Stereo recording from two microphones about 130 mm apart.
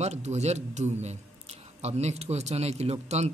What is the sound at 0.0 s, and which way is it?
Speech, 60° right (ahead or behind).